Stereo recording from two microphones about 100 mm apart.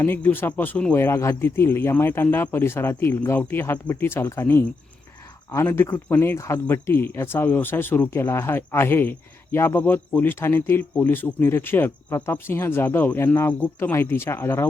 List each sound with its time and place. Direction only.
0.0 s speech: 20° left (ahead or behind)
0.9 s speech: 25° left (ahead or behind)
5.6 s speech: 20° left (ahead or behind)